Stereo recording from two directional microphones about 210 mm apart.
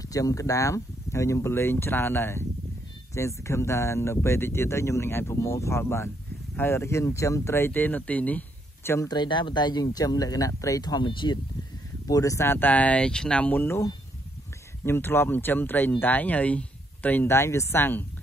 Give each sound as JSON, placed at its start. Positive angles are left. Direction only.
{"t": 0.0, "sound": "speech", "side_deg": 15}